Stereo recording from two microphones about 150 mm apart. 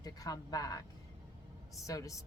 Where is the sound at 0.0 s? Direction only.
25° left (ahead or behind).